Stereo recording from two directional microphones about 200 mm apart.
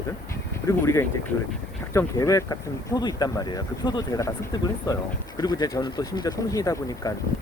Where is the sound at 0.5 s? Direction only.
15° left (ahead or behind).